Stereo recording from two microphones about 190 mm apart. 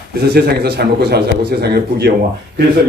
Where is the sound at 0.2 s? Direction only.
55° right (ahead or behind).